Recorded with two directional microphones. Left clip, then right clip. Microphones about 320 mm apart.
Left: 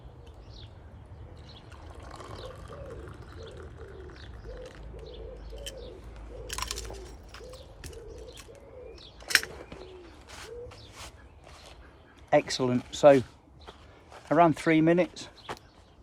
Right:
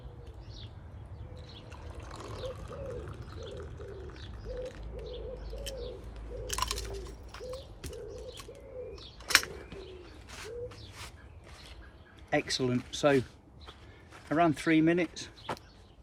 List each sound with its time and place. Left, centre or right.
1.7 s a sound: centre
6.5 s a sound: centre
7.3 s bird: centre
9.2 s bird: centre
10.2 s bird: centre
12.3 s speech: centre
14.3 s speech: centre
15.5 s vehicle: centre